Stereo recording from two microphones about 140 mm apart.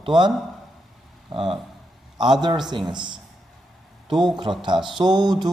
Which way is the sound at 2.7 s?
30° right (ahead or behind).